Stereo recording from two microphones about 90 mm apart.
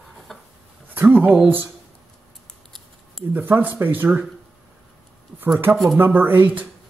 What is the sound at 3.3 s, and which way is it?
Speech, 20° right (ahead or behind).